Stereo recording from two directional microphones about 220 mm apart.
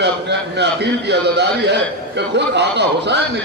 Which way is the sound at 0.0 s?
50° right (ahead or behind).